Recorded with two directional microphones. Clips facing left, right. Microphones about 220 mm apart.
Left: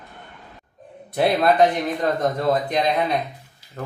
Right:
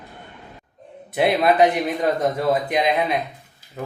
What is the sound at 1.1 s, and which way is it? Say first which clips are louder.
Speech: even; 5° right (ahead or behind).